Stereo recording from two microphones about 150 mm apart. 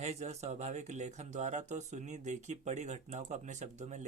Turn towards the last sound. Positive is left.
turn(degrees=-50)  # may be behind; listen again after turning